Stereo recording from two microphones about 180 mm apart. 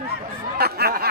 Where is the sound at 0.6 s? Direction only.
60° right (ahead or behind).